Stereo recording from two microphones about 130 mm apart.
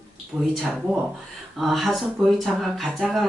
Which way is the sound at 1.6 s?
Centre (ahead or behind).